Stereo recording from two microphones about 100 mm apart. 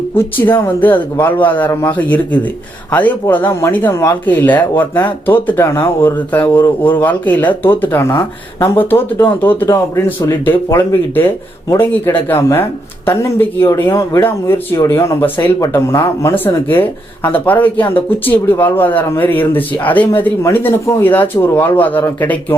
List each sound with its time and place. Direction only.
0.2 s speech: 20° left (ahead or behind)
6.1 s speech: 20° left (ahead or behind)
8.1 s speech: 35° left (ahead or behind)
8.7 s speech: 20° left (ahead or behind)
14.0 s speech: 30° left (ahead or behind)